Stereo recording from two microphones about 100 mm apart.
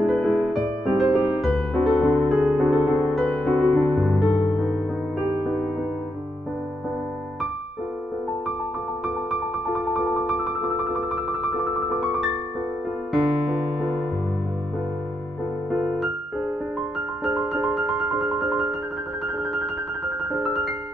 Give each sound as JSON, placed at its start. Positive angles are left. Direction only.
{"t": 0.2, "sound": "music", "side_deg": 0}
{"t": 2.3, "sound": "music", "side_deg": -10}
{"t": 5.3, "sound": "music", "side_deg": -5}
{"t": 9.8, "sound": "music", "side_deg": -5}
{"t": 13.1, "sound": "electric piano", "side_deg": 0}
{"t": 17.2, "sound": "music", "side_deg": -10}